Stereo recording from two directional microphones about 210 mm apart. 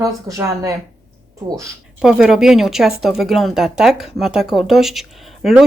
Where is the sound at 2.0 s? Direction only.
5° right (ahead or behind).